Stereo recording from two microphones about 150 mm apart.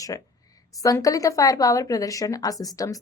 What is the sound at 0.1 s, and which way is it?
A woman's voice, 25° left (ahead or behind).